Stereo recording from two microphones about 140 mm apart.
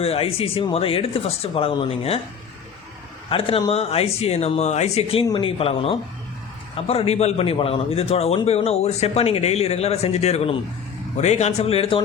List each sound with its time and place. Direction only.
0.0 s speech: 45° left (ahead or behind)
3.2 s a man's voice: 40° left (ahead or behind)